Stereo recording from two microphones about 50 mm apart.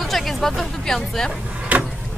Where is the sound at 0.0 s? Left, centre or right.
Centre.